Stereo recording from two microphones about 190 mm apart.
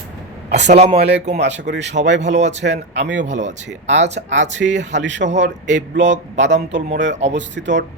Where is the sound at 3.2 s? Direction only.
40° right (ahead or behind).